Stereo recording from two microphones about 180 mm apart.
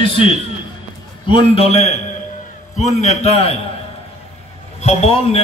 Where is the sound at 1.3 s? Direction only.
30° left (ahead or behind).